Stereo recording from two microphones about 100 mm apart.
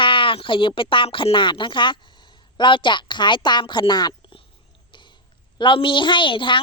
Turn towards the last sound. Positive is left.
turn(degrees=55)  # may be behind; listen again after turning